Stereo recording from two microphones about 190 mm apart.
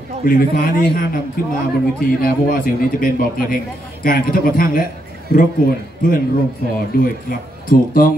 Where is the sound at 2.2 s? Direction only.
50° left (ahead or behind).